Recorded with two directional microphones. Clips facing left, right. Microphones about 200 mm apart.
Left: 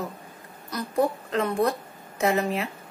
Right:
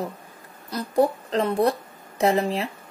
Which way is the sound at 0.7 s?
35° right (ahead or behind).